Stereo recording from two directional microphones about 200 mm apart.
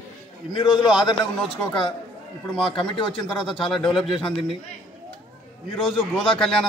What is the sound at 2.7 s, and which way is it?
Speech, 25° left (ahead or behind).